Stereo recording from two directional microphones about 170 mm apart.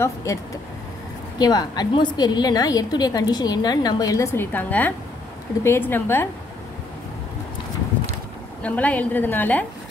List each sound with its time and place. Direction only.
0.0 s a woman's voice: 20° left (ahead or behind)
1.4 s a woman's voice: 25° left (ahead or behind)
8.6 s a woman's voice: 10° left (ahead or behind)